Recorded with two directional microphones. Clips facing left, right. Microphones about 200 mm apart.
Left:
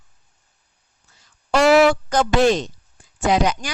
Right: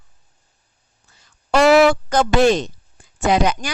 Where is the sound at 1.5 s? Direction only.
60° right (ahead or behind).